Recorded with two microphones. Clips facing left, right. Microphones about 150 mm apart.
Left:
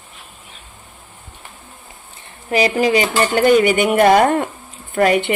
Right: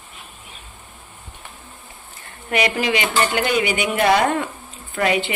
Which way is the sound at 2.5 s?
30° left (ahead or behind).